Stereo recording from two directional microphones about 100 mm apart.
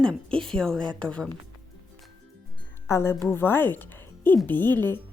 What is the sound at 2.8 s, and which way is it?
A woman's voice, 25° left (ahead or behind).